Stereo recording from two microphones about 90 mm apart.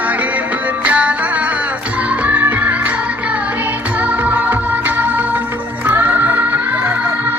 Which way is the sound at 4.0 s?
15° right (ahead or behind).